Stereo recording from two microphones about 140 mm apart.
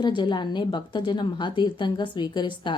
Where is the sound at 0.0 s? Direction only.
35° left (ahead or behind).